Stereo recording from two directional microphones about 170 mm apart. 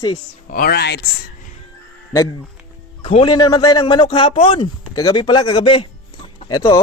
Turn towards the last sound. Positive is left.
turn(degrees=25)  # may be behind; listen again after turning